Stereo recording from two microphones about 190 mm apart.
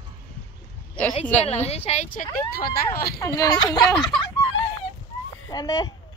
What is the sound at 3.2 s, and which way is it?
Speech, 15° left (ahead or behind).